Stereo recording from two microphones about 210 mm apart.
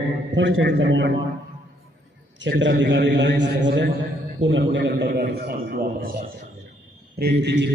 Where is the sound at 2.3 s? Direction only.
60° right (ahead or behind).